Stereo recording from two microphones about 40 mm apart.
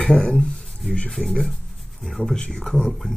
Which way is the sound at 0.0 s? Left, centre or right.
Left.